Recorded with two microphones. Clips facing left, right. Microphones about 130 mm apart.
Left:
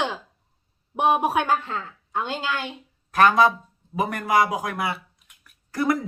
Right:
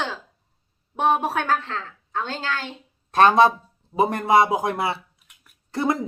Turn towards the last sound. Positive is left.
turn(degrees=-25)  # may be behind; listen again after turning